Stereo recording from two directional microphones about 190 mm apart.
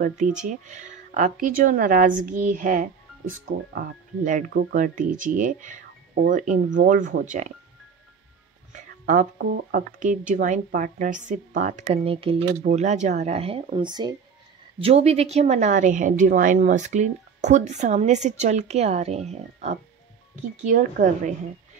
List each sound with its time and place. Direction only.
0.5 s speech: 40° right (ahead or behind)
8.7 s a woman's voice: 40° right (ahead or behind); by 14.1 s 25° right (ahead or behind)
14.8 s a woman's voice: 35° right (ahead or behind)